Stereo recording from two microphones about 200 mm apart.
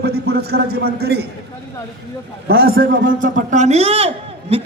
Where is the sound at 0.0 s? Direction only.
50° right (ahead or behind).